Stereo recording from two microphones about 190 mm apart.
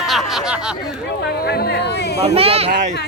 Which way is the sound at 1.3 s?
55° left (ahead or behind).